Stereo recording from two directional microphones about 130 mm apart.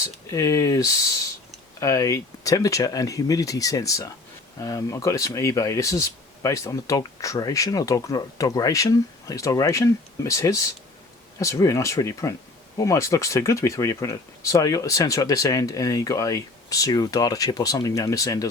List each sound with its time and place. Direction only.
0.0 s speech: 25° left (ahead or behind)